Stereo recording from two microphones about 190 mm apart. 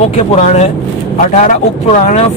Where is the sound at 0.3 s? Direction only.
35° left (ahead or behind).